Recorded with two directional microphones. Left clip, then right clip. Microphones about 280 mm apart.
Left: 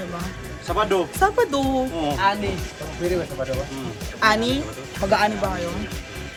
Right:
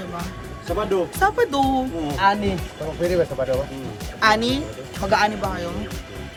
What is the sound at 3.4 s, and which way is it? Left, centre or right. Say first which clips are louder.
Speech: right 4 dB; right.